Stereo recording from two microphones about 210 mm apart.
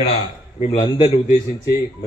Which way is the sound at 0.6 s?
30° left (ahead or behind).